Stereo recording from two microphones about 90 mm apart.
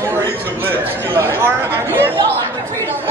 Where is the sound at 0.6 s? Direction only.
25° right (ahead or behind).